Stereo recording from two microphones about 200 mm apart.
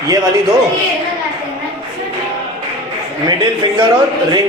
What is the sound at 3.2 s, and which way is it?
Speech, 20° right (ahead or behind).